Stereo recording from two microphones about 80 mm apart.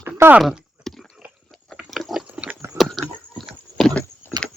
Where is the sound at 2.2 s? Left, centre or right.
Centre.